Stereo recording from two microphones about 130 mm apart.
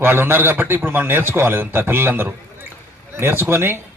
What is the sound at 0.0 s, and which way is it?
A man's voice, 15° right (ahead or behind).